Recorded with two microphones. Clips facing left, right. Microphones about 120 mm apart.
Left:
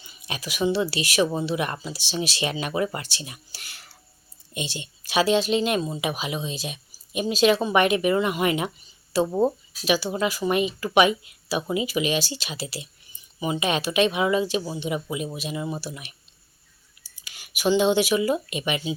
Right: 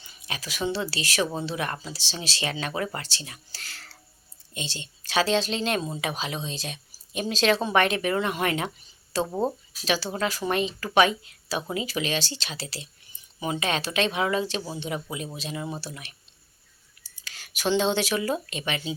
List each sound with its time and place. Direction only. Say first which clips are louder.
0.0 s speech: left 3 dB; 15° left (ahead or behind)